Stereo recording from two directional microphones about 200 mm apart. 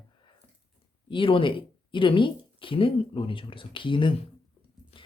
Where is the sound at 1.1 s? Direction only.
25° left (ahead or behind).